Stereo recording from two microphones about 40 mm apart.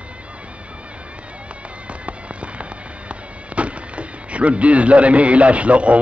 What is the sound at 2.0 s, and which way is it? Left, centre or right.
Fireworks, right.